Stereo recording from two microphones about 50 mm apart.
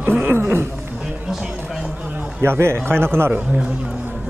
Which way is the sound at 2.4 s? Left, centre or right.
Right.